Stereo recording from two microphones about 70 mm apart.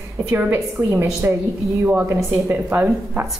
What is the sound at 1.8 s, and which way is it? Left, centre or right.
Speech, right.